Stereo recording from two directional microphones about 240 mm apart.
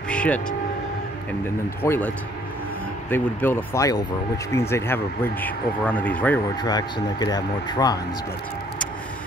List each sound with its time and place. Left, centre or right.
0.1 s vehicle: centre
1.8 s speech: centre